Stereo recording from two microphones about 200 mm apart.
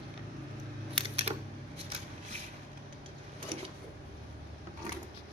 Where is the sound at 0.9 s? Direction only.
30° right (ahead or behind).